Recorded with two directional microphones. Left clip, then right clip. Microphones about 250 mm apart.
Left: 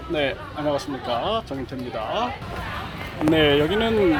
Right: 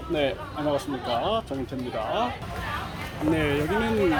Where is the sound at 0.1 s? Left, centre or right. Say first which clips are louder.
Left 2 dB; centre.